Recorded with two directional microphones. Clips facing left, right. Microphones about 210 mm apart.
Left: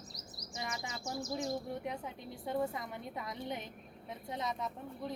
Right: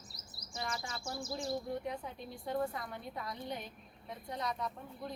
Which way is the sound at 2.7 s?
20° left (ahead or behind).